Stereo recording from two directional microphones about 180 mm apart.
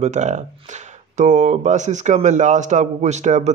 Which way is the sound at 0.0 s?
40° right (ahead or behind).